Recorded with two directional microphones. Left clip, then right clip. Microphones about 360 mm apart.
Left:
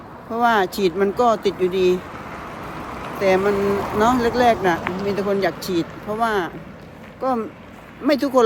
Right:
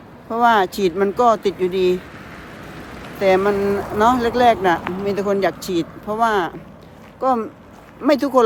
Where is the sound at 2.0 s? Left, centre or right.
Centre.